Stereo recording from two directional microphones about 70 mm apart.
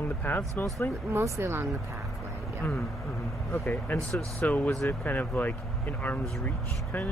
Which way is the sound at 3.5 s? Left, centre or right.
Left.